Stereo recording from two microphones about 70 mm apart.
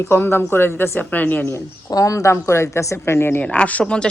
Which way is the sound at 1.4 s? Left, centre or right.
Left.